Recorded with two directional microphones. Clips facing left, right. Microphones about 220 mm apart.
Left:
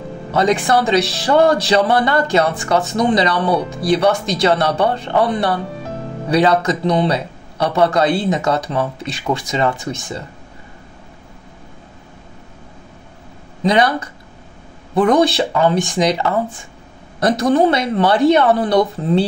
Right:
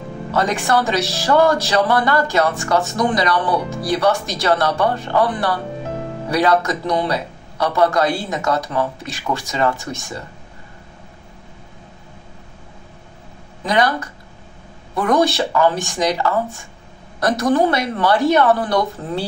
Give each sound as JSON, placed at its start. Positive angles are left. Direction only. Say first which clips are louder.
{"t": 0.3, "sound": "speech", "louder": "left 3 dB", "side_deg": 15}
{"t": 13.6, "sound": "speech", "louder": "left 3 dB", "side_deg": 20}